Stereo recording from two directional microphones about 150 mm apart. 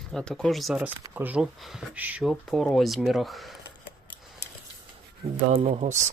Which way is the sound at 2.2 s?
Centre (ahead or behind).